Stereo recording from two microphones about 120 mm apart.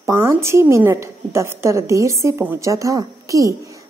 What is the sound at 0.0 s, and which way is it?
A woman's voice, 25° right (ahead or behind).